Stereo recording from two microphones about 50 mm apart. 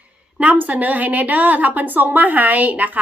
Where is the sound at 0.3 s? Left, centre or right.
Right.